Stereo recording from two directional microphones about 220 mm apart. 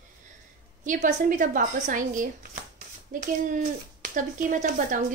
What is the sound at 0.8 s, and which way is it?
Speech, 35° right (ahead or behind).